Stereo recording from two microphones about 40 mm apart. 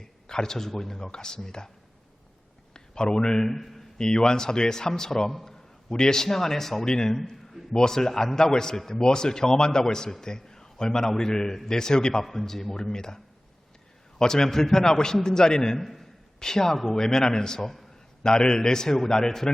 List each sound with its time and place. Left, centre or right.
0.0 s a man's voice: centre
2.7 s speech: centre
3.5 s a man's voice: centre
3.9 s a man's voice: centre
15.8 s a man's voice: centre
16.4 s a man's voice: centre